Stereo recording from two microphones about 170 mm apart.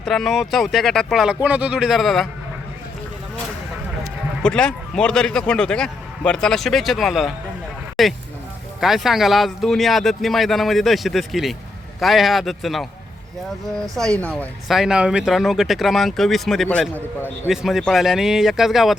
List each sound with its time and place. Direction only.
0.0 s speech: centre (ahead or behind)
4.4 s speech: 5° left (ahead or behind)
17.5 s speech: centre (ahead or behind)